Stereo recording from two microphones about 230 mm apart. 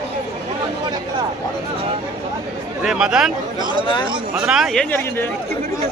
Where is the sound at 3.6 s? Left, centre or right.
Centre.